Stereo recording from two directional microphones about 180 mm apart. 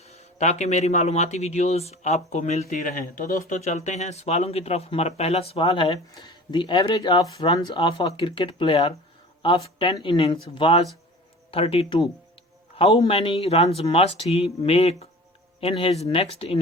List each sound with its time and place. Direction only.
0.1 s a man's voice: 40° left (ahead or behind)